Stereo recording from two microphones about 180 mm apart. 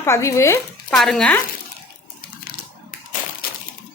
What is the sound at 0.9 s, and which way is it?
Speech, 5° left (ahead or behind).